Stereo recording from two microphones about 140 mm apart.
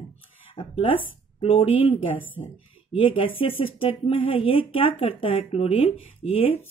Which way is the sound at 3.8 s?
40° left (ahead or behind).